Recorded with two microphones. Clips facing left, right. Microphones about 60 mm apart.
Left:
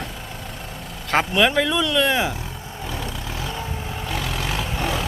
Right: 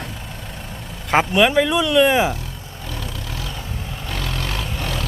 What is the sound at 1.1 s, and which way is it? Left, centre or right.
Speech, centre.